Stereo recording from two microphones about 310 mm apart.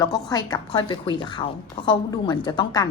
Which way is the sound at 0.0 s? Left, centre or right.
Centre.